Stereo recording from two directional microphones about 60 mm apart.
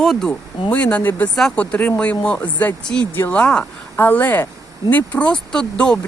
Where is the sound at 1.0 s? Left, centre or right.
Left.